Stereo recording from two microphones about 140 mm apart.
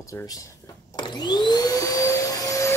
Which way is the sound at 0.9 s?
35° left (ahead or behind).